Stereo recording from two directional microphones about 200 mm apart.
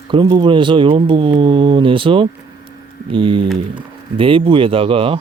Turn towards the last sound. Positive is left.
turn(degrees=-25)  # may be behind; listen again after turning